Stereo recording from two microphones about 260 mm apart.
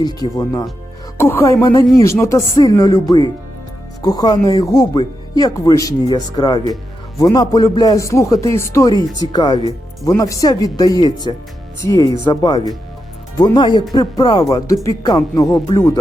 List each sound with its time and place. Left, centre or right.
0.2 s speech: centre